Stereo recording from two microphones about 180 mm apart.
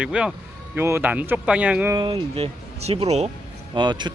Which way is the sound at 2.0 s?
30° right (ahead or behind).